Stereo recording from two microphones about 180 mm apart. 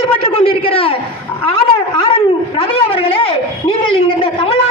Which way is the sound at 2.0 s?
35° left (ahead or behind).